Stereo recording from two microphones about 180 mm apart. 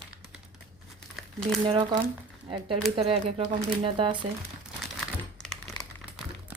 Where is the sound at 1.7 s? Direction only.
25° right (ahead or behind).